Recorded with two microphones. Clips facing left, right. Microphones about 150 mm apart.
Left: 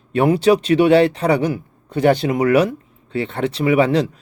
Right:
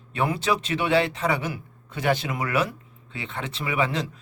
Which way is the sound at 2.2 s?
30° left (ahead or behind).